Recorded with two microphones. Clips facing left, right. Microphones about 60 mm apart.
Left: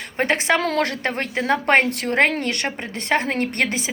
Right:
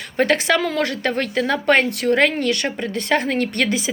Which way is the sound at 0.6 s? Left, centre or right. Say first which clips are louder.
Even; left.